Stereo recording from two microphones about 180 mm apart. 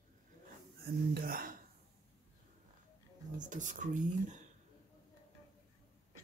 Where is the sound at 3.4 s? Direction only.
45° right (ahead or behind).